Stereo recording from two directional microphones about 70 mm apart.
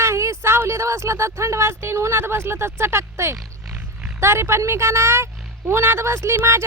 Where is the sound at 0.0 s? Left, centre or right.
Right.